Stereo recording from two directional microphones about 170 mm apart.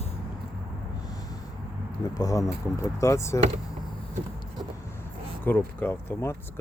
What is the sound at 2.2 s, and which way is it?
Speech, 20° left (ahead or behind).